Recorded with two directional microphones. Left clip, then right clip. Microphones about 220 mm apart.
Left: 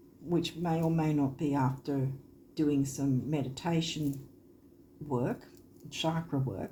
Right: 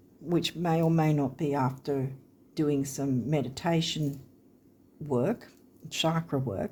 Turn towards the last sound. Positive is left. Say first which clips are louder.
# right 5 dB
turn(degrees=-50)  # may be behind; listen again after turning